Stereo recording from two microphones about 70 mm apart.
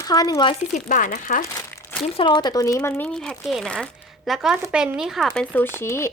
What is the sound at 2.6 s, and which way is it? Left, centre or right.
Speech, left.